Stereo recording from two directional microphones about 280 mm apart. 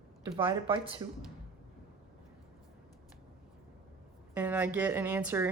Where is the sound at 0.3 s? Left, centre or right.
Centre.